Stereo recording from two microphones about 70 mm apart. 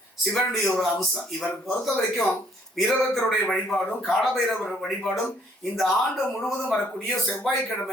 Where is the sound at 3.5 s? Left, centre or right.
Centre.